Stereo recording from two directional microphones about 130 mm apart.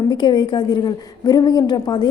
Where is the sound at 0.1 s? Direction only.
35° left (ahead or behind).